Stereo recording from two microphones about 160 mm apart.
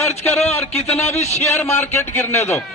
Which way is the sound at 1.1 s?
45° left (ahead or behind).